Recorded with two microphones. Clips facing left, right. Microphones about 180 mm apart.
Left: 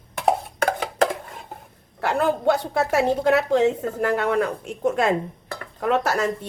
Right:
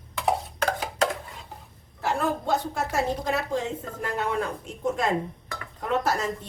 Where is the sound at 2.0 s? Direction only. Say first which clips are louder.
Left 5 dB; 70° left (ahead or behind).